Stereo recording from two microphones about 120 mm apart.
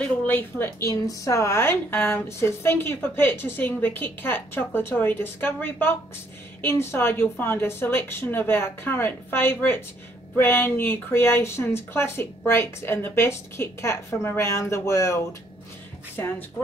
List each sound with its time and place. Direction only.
0.3 s a woman's voice: 15° left (ahead or behind)